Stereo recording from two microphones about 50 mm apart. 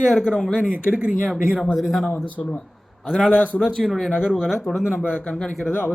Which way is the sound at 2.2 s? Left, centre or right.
Left.